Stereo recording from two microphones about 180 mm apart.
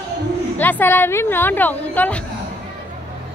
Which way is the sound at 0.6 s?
10° left (ahead or behind).